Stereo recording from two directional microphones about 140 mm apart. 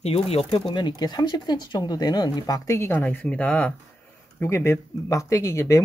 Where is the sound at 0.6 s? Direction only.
30° left (ahead or behind).